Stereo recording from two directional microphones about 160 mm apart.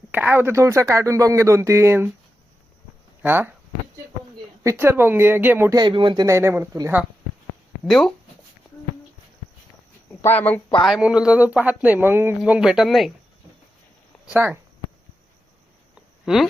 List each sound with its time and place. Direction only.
0.1 s speech: 10° right (ahead or behind)
3.2 s speech: 10° right (ahead or behind)
4.6 s speech: 15° right (ahead or behind)
5.7 s speech: 25° right (ahead or behind)
7.9 s speech: centre (ahead or behind)
10.2 s speech: 10° left (ahead or behind)
10.8 s speech: 5° right (ahead or behind)
14.3 s speech: 15° right (ahead or behind)
16.2 s speech: centre (ahead or behind)